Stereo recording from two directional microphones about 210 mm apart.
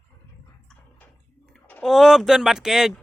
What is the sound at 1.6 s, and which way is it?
Speech, 5° left (ahead or behind).